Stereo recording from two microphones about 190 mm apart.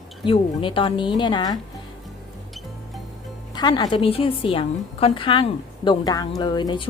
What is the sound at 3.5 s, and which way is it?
A woman's voice, 20° left (ahead or behind).